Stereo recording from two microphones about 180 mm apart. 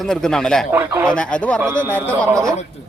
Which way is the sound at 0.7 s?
10° right (ahead or behind).